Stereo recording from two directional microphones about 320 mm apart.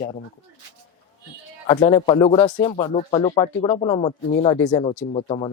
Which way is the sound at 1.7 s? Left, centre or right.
Centre.